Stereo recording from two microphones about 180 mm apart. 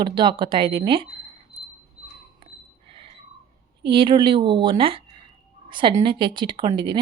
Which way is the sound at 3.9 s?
25° right (ahead or behind).